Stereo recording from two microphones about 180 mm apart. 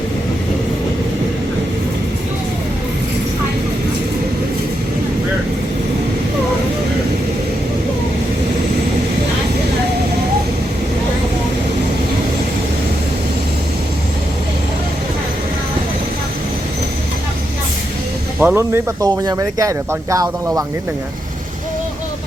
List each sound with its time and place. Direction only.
18.3 s speech: 10° right (ahead or behind)